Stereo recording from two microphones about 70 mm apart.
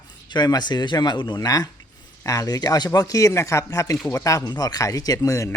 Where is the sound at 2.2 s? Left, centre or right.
Left.